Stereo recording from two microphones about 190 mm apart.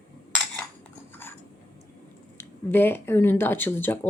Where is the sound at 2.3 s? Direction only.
10° left (ahead or behind).